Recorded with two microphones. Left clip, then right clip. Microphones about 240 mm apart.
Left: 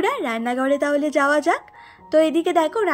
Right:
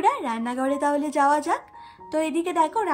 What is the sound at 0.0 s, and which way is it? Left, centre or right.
A woman's voice, centre.